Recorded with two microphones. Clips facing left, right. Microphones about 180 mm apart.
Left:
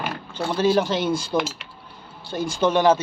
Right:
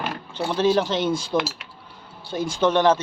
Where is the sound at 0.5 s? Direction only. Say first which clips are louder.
Even; 5° left (ahead or behind).